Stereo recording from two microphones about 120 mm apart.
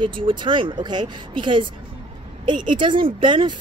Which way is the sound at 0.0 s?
45° right (ahead or behind).